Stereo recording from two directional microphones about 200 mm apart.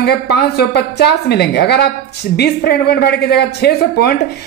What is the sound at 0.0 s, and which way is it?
A woman's voice, 55° left (ahead or behind).